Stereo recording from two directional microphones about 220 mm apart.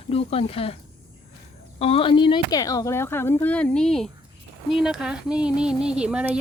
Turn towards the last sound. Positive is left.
turn(degrees=-5)  # may be behind; listen again after turning